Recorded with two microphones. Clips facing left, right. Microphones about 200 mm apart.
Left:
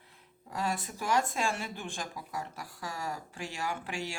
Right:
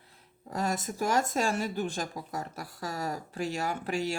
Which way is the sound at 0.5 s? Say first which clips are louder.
Right 3 dB; 40° right (ahead or behind).